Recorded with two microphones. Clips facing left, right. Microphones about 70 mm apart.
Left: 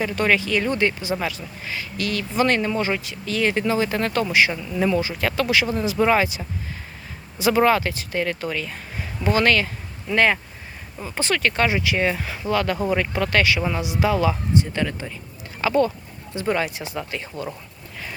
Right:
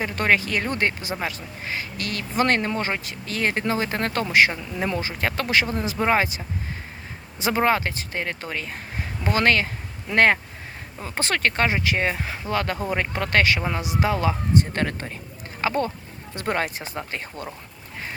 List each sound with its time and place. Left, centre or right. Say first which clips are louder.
0.0 s speech: left 1 dB; right
6.0 s speech: left 2 dB; right
7.3 s speech: left 3 dB; right
10.1 s speech: right 1 dB; right
14.6 s speech: even; right
15.6 s speech: left 4 dB; right
16.3 s speech: left 2 dB; right